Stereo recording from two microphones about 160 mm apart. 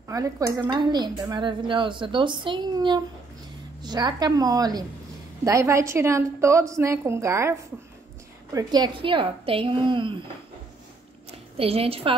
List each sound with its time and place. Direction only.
0.1 s a woman's voice: 20° right (ahead or behind)
8.5 s a woman's voice: 25° right (ahead or behind)
11.5 s a woman's voice: 35° right (ahead or behind)